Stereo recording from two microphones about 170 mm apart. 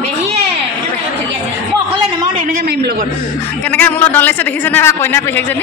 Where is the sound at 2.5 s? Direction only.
65° right (ahead or behind).